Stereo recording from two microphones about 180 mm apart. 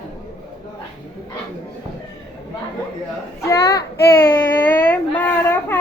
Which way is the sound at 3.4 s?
20° left (ahead or behind).